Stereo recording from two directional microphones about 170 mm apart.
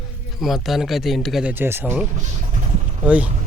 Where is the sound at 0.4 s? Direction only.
Centre (ahead or behind).